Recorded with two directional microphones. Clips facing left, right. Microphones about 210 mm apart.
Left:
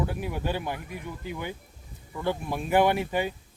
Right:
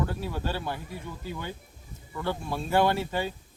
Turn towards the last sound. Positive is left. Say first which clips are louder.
# left 2 dB
turn(degrees=15)  # may be behind; listen again after turning